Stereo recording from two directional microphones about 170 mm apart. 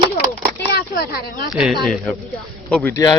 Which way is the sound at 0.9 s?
65° left (ahead or behind).